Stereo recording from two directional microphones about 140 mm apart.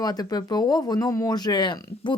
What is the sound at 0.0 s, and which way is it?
Speech, 30° left (ahead or behind).